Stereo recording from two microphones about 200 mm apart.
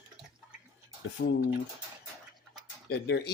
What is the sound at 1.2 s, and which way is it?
Speech, 50° left (ahead or behind).